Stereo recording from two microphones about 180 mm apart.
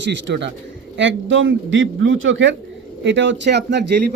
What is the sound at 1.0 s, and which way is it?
A man's voice, 90° right.